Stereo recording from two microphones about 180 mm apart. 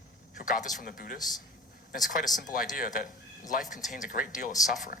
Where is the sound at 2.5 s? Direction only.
50° left (ahead or behind).